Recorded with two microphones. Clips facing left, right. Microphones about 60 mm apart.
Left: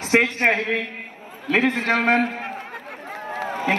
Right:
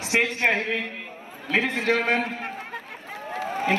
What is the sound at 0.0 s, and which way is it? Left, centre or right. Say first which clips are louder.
A man's voice: left 4 dB; left.